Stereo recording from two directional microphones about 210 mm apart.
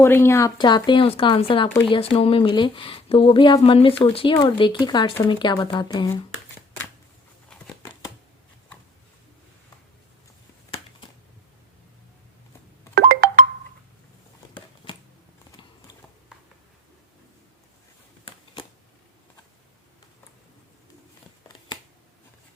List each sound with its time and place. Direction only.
0.0 s speech: 10° left (ahead or behind)
7.8 s shuffling cards: 20° left (ahead or behind)
14.8 s a sound: 25° left (ahead or behind)